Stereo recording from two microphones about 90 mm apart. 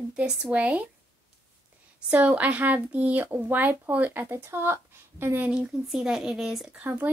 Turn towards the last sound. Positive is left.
turn(degrees=-20)  # may be behind; listen again after turning